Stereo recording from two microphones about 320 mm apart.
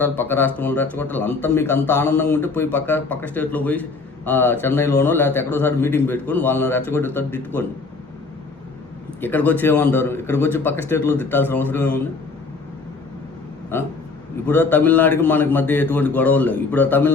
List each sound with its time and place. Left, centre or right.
0.0 s a man's voice: centre
9.2 s a man's voice: centre
14.4 s a man's voice: centre